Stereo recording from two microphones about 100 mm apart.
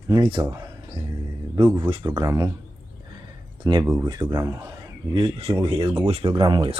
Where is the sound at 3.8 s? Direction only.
25° right (ahead or behind).